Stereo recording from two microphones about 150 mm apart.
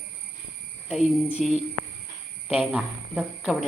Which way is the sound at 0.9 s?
5° right (ahead or behind).